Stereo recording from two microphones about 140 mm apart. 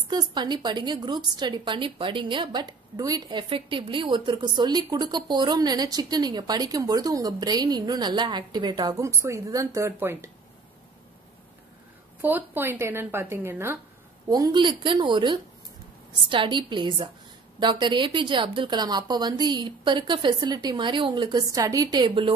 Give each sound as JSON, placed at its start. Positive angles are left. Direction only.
{"t": 0.1, "sound": "a woman's voice", "side_deg": -30}
{"t": 12.2, "sound": "speech", "side_deg": -10}
{"t": 14.3, "sound": "a woman's voice", "side_deg": -30}